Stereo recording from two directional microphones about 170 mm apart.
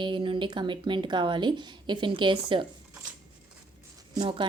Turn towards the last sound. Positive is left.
turn(degrees=-30)  # may be behind; listen again after turning